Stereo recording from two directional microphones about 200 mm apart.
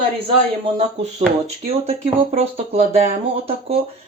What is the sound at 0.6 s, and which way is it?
Speech, 30° right (ahead or behind).